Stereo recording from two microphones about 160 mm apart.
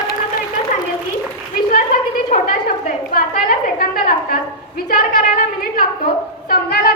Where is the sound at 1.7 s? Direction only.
55° left (ahead or behind).